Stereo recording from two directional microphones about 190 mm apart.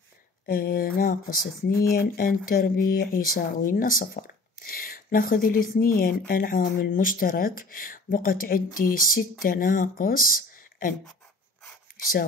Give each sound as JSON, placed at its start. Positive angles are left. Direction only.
{"t": 0.5, "sound": "speech", "side_deg": 50}
{"t": 12.0, "sound": "speech", "side_deg": 50}